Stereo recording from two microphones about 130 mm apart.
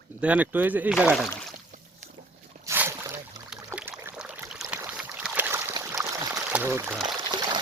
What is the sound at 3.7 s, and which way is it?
Trickle, 20° right (ahead or behind).